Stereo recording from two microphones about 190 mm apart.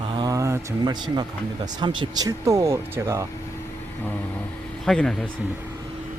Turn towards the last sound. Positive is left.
turn(degrees=0)  # may be behind; listen again after turning